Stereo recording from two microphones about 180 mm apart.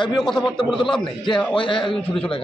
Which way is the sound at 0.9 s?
25° left (ahead or behind).